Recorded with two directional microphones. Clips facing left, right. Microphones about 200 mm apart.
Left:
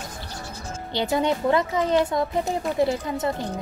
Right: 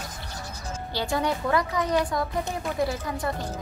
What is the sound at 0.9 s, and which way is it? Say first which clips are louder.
Speech: left 4 dB; 20° left (ahead or behind).